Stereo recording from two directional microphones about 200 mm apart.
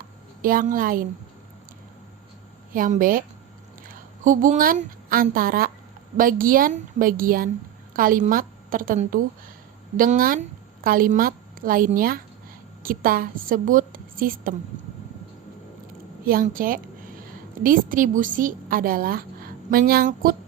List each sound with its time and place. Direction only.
0.4 s a woman's voice: 45° right (ahead or behind)
2.7 s a woman's voice: 40° right (ahead or behind)
16.2 s a woman's voice: 45° right (ahead or behind)